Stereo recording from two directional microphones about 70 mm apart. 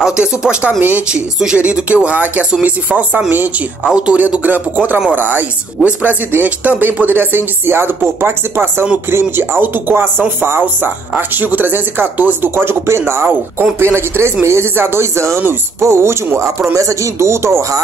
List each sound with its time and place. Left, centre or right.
0.0 s speech: centre; by 16.4 s right
16.7 s speech: right